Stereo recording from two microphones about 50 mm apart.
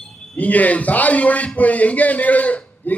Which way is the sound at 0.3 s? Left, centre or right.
Left.